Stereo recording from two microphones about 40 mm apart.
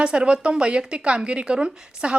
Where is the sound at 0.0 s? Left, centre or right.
Right.